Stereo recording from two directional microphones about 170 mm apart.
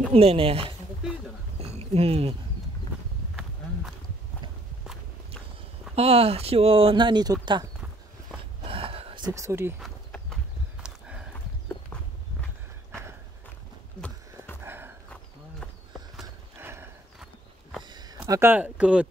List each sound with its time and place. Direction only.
0.1 s speech: 35° right (ahead or behind)
1.6 s a sound: 35° right (ahead or behind)
5.9 s speech: 35° right (ahead or behind)
8.6 s a sound: 35° right (ahead or behind)
9.3 s speech: 15° right (ahead or behind)
9.8 s horse: centre (ahead or behind)
14.6 s walk: 15° right (ahead or behind)
16.5 s horse: 15° right (ahead or behind)
17.2 s walk: centre (ahead or behind)
17.8 s speech: 25° right (ahead or behind); by 19.0 s 5° right (ahead or behind)